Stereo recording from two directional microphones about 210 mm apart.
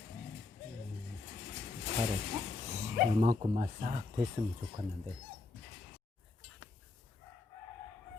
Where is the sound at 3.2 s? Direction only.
35° right (ahead or behind).